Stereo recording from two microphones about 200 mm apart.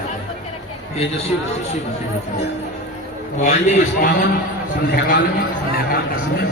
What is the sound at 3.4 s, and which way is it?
Speech, 40° left (ahead or behind).